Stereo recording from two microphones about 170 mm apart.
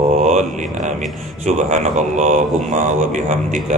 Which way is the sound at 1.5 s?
45° right (ahead or behind).